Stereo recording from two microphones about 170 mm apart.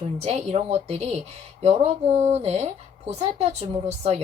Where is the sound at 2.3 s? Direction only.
40° right (ahead or behind).